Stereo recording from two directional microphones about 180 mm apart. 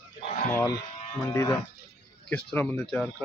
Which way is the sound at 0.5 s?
20° left (ahead or behind).